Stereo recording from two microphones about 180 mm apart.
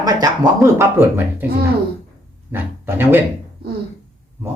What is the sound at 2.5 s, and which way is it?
Speech, 10° right (ahead or behind).